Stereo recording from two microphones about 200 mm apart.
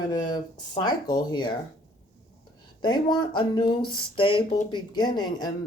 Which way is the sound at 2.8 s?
20° left (ahead or behind).